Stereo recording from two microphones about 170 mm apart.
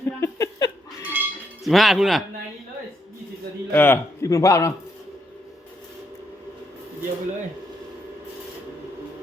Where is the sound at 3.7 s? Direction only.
15° left (ahead or behind).